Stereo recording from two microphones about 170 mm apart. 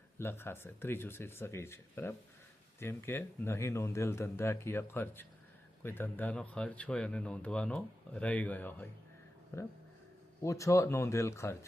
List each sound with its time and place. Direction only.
0.2 s speech: 15° left (ahead or behind)